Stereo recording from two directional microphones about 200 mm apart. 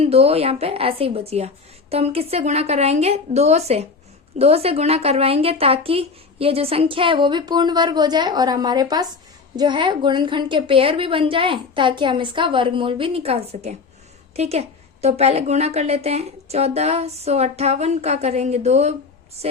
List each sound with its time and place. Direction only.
0.0 s a woman's voice: 30° right (ahead or behind)